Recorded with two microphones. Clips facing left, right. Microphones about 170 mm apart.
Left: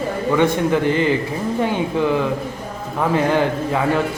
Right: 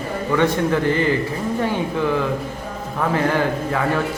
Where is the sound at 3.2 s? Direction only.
20° left (ahead or behind).